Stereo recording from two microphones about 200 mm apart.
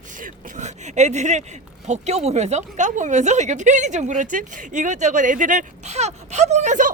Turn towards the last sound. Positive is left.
turn(degrees=-40)  # may be behind; listen again after turning